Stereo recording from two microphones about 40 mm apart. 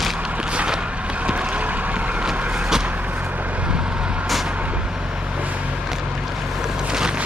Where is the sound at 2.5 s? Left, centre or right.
Centre.